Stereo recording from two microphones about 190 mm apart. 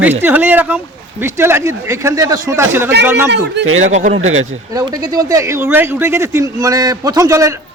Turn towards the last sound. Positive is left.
turn(degrees=-15)  # may be behind; listen again after turning